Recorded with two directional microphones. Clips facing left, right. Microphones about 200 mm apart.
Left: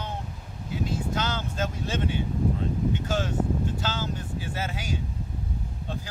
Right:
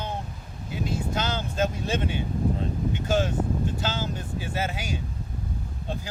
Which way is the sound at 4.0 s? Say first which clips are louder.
Right 1 dB; 15° right (ahead or behind).